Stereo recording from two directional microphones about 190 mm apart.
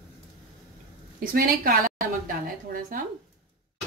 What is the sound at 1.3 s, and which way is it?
Speech, 50° right (ahead or behind).